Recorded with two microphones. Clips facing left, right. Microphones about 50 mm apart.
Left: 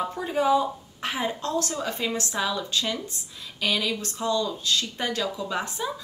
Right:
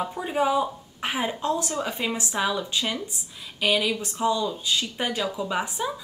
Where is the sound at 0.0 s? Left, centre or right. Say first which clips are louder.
Even; centre.